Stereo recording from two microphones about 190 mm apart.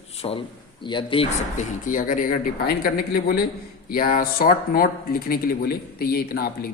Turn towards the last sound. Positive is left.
turn(degrees=55)  # may be behind; listen again after turning